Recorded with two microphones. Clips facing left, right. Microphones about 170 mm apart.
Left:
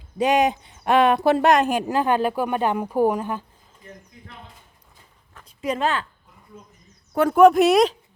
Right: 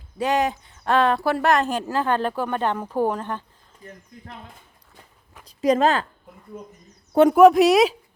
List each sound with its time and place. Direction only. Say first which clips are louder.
0.2 s speech: left 3 dB; 15° left (ahead or behind)
5.6 s speech: right 5 dB; 40° right (ahead or behind)
7.1 s speech: right 5 dB; 25° right (ahead or behind)
7.3 s speech: left 1 dB; centre (ahead or behind)